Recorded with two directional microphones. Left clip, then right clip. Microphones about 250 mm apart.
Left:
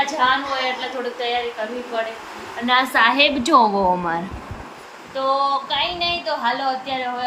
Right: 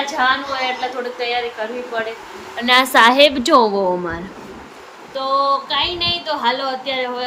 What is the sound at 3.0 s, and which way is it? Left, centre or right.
A woman's voice, centre.